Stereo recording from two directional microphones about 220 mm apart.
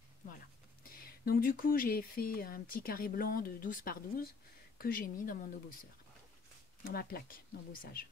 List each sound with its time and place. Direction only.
0.8 s speech: 40° left (ahead or behind)
6.8 s speech: 40° left (ahead or behind)